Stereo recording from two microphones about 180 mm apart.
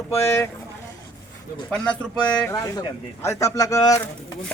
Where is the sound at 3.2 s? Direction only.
15° left (ahead or behind).